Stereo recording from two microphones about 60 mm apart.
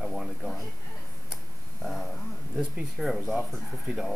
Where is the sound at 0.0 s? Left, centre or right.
Centre.